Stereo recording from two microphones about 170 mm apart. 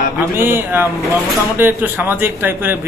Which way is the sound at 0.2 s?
15° right (ahead or behind).